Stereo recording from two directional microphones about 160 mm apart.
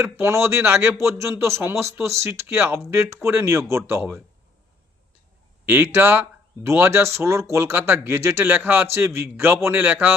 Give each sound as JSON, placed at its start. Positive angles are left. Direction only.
{"t": 0.0, "sound": "a man's voice", "side_deg": -15}
{"t": 5.6, "sound": "a man's voice", "side_deg": -15}